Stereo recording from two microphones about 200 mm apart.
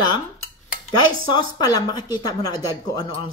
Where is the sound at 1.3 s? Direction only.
20° left (ahead or behind).